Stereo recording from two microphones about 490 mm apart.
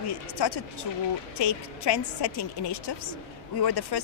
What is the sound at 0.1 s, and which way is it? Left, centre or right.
Speech, left.